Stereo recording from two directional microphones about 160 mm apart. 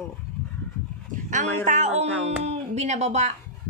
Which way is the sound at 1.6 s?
50° right (ahead or behind).